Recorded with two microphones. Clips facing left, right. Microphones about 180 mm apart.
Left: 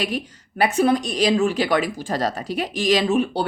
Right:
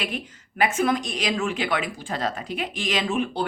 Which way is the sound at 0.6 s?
35° left (ahead or behind).